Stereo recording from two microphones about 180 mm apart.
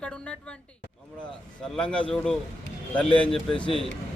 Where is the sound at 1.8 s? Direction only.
5° left (ahead or behind).